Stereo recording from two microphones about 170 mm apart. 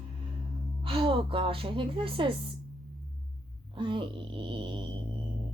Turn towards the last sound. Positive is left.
turn(degrees=-30)  # may be behind; listen again after turning